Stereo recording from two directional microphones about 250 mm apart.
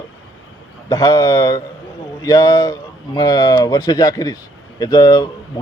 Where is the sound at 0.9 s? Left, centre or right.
Centre.